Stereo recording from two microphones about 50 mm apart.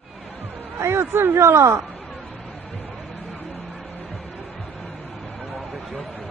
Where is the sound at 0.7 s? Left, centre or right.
Right.